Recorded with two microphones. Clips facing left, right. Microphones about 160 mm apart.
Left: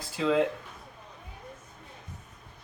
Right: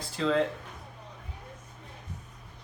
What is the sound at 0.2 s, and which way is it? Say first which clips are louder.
Speech: left 1 dB; 5° left (ahead or behind).